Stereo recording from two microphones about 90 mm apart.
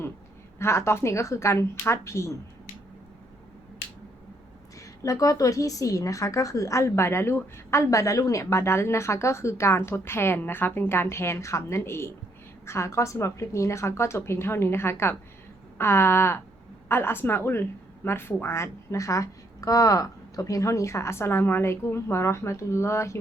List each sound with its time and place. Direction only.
0.6 s a woman's voice: 30° left (ahead or behind)
5.0 s a woman's voice: 40° left (ahead or behind)
15.8 s a sound: 25° left (ahead or behind)
16.9 s a woman's voice: 25° left (ahead or behind)